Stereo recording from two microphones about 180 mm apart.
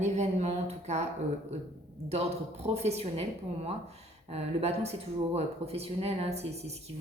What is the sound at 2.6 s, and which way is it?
Speech, 35° right (ahead or behind).